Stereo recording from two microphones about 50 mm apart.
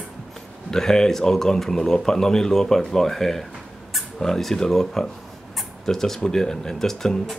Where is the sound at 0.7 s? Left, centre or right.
Centre.